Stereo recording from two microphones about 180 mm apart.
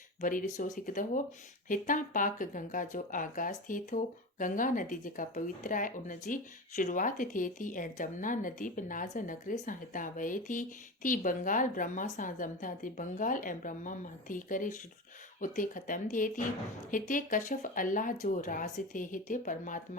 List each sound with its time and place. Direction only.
0.2 s speech: 50° left (ahead or behind)